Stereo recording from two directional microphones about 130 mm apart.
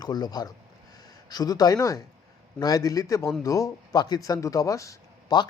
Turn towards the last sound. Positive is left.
turn(degrees=30)  # may be behind; listen again after turning